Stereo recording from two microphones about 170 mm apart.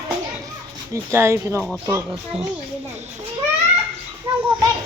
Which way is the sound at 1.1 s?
15° right (ahead or behind).